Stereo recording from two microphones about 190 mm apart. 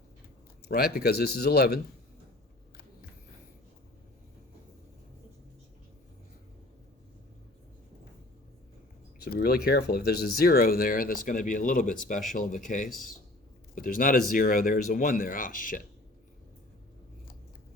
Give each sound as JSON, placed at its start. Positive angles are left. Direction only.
{"t": 0.6, "sound": "a sound", "side_deg": 55}
{"t": 0.9, "sound": "speech", "side_deg": 55}
{"t": 9.1, "sound": "speech", "side_deg": 55}